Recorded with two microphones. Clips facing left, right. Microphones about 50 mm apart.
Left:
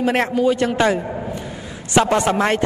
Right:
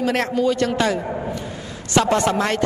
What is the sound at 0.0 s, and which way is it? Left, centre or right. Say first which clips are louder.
A woman's voice: left 2 dB; left.